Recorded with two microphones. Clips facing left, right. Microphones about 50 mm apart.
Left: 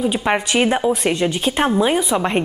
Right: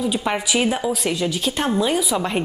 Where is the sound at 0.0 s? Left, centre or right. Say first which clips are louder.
Left 3 dB; left.